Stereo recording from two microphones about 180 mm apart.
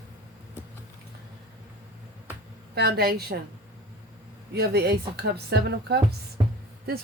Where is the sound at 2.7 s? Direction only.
60° right (ahead or behind).